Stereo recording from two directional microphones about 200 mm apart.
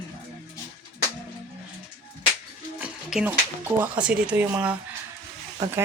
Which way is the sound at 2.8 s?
5° right (ahead or behind).